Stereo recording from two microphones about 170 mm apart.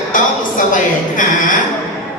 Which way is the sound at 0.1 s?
50° left (ahead or behind).